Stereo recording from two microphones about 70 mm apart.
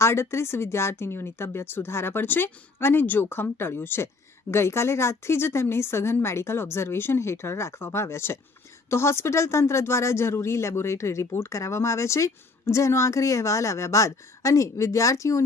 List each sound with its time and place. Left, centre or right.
0.0 s speech: left